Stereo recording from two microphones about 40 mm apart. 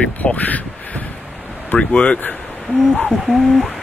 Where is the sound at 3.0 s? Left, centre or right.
Centre.